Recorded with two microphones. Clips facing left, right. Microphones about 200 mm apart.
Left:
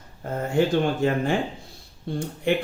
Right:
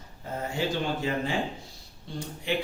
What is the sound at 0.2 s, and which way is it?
Speech, 55° left (ahead or behind).